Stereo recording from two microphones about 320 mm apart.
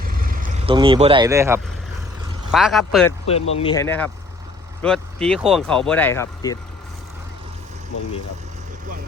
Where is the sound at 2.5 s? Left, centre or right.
Centre.